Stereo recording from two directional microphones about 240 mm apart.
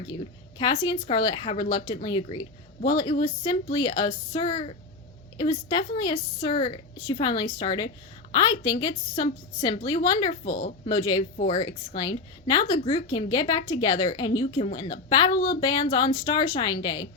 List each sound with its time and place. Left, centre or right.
0.6 s a woman's voice: centre
10.4 s speech: left
10.8 s a woman's voice: centre
11.3 s speech: left
11.6 s a woman's voice: centre